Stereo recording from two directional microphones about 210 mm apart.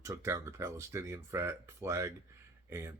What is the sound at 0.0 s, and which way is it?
Speech, 15° right (ahead or behind).